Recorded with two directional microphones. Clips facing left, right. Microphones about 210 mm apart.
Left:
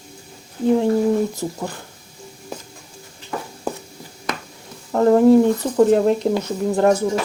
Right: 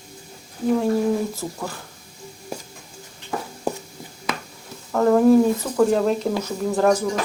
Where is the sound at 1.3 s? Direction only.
15° left (ahead or behind).